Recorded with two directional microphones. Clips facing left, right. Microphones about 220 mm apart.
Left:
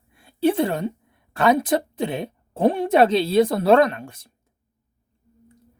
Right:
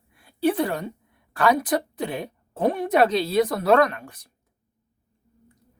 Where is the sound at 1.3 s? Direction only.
25° left (ahead or behind).